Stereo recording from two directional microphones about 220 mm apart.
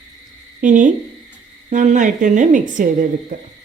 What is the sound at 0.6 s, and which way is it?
Speech, 35° right (ahead or behind).